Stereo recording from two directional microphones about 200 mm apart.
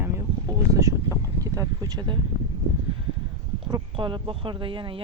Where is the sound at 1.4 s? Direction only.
15° right (ahead or behind).